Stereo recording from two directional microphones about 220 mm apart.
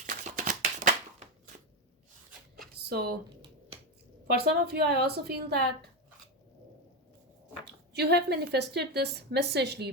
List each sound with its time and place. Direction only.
0.0 s a sound: 35° right (ahead or behind)
2.8 s speech: 45° right (ahead or behind)
4.3 s a woman's voice: 45° right (ahead or behind)
7.9 s a woman's voice: 50° right (ahead or behind)